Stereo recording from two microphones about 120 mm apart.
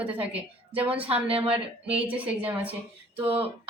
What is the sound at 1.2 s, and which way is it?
Speech, 50° right (ahead or behind).